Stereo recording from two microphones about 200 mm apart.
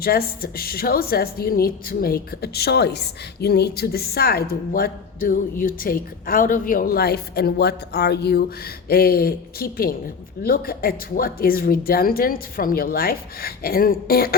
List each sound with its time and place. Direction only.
0.0 s a woman's voice: 50° left (ahead or behind)